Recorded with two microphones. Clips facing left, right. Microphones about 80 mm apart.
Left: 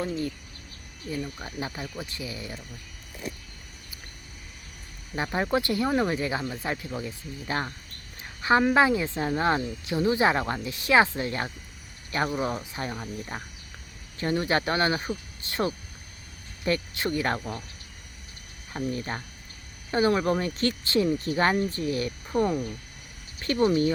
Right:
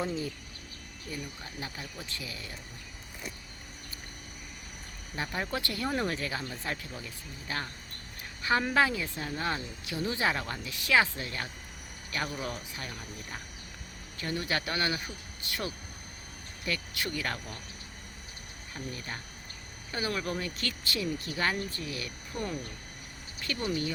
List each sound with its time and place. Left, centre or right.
1.2 s speech: left
5.1 s speech: left
18.7 s speech: left